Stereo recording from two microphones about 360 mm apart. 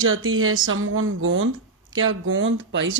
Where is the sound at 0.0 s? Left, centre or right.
Right.